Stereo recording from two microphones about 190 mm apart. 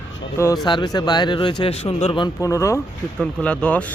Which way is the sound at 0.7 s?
20° left (ahead or behind).